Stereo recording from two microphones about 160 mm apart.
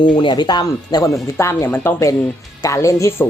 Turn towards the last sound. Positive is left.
turn(degrees=20)  # may be behind; listen again after turning